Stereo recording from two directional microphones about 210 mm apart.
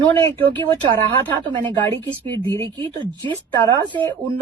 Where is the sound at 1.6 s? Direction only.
20° right (ahead or behind).